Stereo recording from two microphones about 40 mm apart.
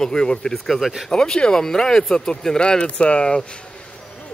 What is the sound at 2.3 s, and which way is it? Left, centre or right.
Speech, left.